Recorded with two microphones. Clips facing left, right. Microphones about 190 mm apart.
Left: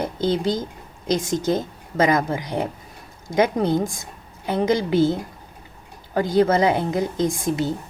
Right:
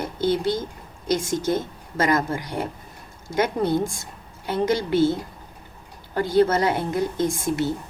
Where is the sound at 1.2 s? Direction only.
15° left (ahead or behind).